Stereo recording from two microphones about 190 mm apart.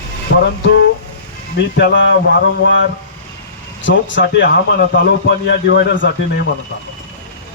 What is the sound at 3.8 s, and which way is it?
A man's voice, 75° left (ahead or behind).